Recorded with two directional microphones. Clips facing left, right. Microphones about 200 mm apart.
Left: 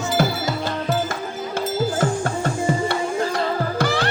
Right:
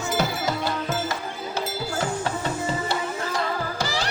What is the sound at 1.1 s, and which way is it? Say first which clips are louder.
Music: left 3 dB; 50° left (ahead or behind).